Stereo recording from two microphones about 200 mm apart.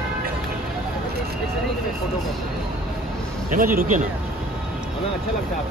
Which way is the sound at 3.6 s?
45° right (ahead or behind).